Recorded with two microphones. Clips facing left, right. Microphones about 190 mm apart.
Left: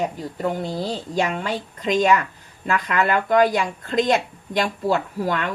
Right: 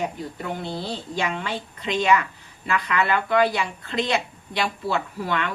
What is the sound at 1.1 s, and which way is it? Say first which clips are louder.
Speech: left 4 dB; 40° left (ahead or behind).